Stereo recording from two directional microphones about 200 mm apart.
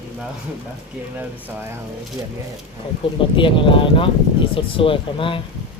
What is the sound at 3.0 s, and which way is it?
Speech, 25° left (ahead or behind).